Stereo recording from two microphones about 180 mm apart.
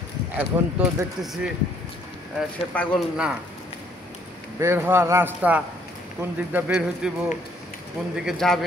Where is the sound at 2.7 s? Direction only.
10° left (ahead or behind).